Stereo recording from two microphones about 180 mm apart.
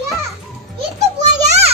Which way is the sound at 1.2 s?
35° right (ahead or behind).